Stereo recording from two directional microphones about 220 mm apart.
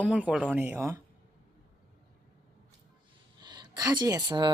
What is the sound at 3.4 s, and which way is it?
Speech, 20° right (ahead or behind).